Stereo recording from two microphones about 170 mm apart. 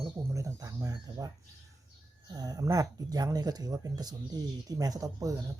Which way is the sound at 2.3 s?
20° right (ahead or behind).